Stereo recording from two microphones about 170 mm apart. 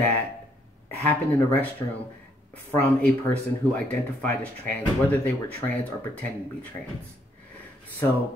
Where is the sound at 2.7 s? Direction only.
10° left (ahead or behind).